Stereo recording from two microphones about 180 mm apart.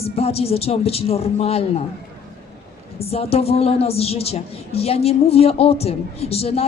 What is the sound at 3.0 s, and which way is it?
A woman's voice, 35° left (ahead or behind).